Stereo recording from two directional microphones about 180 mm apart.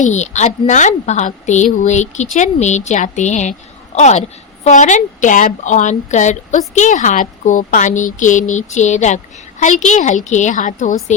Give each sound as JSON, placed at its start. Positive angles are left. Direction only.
{"t": 0.0, "sound": "a woman's voice", "side_deg": 40}